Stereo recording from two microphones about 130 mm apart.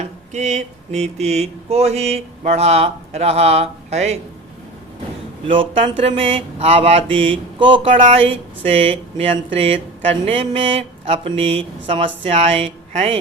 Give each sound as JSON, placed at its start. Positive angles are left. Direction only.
{"t": 0.3, "sound": "mantra", "side_deg": -60}
{"t": 5.5, "sound": "speech", "side_deg": -45}